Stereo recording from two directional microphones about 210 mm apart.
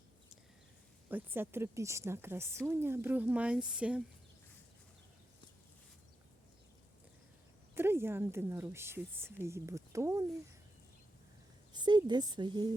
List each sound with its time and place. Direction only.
1.1 s speech: 10° right (ahead or behind)
7.8 s speech: 10° right (ahead or behind)
11.7 s a woman's voice: 20° right (ahead or behind)